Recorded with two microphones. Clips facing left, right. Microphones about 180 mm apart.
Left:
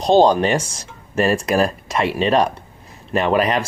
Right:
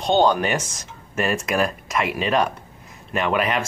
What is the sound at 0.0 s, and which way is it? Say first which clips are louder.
Speech: left 5 dB; 35° left (ahead or behind).